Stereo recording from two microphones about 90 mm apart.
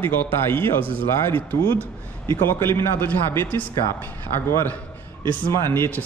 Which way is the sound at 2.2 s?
25° left (ahead or behind).